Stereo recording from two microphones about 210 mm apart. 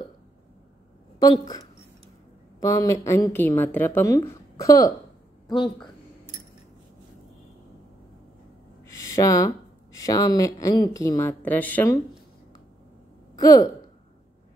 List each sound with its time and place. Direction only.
2.6 s a woman's voice: 15° left (ahead or behind)
8.8 s a sound: 15° left (ahead or behind)
9.9 s a woman's voice: 15° left (ahead or behind)
13.4 s speech: 20° left (ahead or behind)